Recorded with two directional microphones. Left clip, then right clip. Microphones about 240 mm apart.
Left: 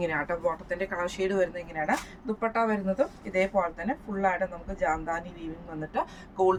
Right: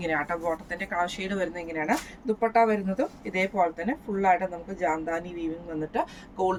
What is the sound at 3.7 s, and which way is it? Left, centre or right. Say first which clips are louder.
Speech: right 2 dB; centre.